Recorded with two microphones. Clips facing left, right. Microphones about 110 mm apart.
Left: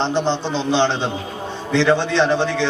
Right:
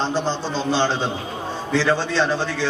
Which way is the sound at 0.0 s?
20° left (ahead or behind).